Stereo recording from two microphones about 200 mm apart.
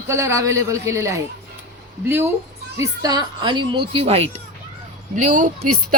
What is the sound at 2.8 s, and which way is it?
A woman's voice, 20° right (ahead or behind).